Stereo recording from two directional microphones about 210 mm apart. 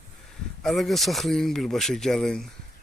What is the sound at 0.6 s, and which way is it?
Speech, centre (ahead or behind).